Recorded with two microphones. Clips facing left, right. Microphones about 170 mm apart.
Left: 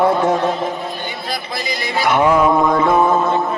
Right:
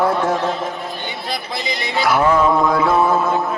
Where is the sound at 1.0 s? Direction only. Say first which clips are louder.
Left 1 dB; 20° right (ahead or behind).